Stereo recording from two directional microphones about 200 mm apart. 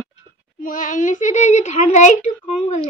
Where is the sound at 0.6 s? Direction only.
40° left (ahead or behind).